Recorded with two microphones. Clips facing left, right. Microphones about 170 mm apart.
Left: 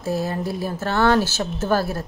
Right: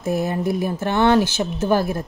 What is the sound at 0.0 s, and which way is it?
Speech, 20° right (ahead or behind).